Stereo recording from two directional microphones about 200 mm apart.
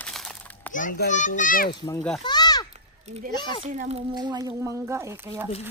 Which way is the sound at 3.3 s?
20° left (ahead or behind).